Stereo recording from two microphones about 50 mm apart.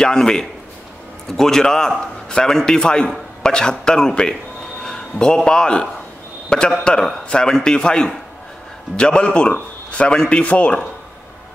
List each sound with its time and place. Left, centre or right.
0.0 s a man's voice: centre
10.4 s a man's voice: left